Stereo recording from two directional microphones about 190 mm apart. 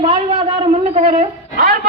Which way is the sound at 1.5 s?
50° right (ahead or behind).